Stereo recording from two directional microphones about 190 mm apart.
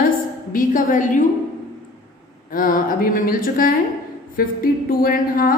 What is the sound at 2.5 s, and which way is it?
A woman's voice, 45° left (ahead or behind).